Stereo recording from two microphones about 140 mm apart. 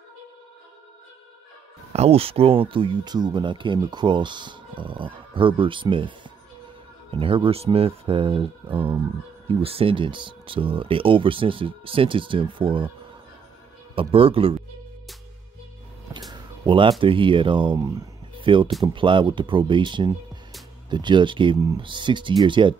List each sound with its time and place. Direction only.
1.9 s speech: 45° right (ahead or behind)
13.9 s speech: 40° right (ahead or behind)
16.1 s a sound: 30° right (ahead or behind)
17.0 s speech: 40° right (ahead or behind)